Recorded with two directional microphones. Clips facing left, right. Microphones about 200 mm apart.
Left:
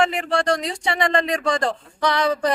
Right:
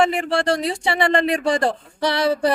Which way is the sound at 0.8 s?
30° right (ahead or behind).